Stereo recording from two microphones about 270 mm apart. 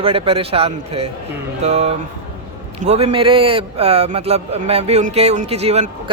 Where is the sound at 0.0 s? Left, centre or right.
Right.